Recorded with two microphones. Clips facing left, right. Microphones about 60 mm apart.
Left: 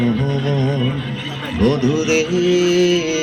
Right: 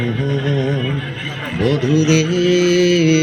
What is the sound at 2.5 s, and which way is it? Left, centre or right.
Mantra, right.